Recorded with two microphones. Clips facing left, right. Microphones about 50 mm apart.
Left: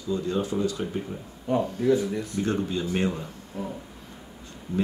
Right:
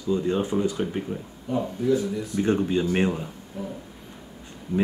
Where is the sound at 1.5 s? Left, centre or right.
Left.